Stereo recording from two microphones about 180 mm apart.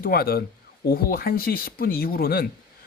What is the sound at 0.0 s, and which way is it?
Speech, 55° left (ahead or behind).